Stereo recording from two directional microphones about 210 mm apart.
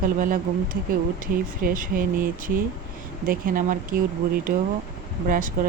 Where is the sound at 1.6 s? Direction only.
45° right (ahead or behind).